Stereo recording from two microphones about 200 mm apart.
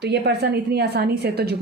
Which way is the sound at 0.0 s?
55° right (ahead or behind).